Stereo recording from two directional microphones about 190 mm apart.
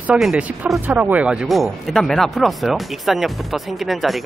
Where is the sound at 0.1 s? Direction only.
5° right (ahead or behind).